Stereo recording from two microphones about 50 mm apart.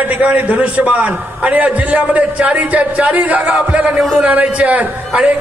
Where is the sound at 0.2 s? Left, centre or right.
Right.